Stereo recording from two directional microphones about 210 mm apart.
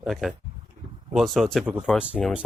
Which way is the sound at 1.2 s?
Centre (ahead or behind).